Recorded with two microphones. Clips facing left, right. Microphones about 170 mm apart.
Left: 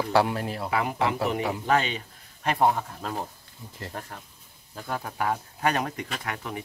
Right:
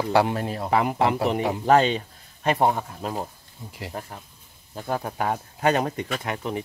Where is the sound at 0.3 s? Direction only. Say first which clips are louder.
Right 4 dB; 30° right (ahead or behind).